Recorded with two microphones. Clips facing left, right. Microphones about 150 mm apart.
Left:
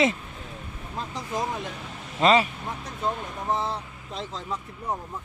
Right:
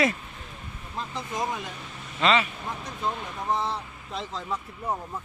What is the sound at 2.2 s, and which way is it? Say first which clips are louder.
Speech: left 3 dB; 40° left (ahead or behind).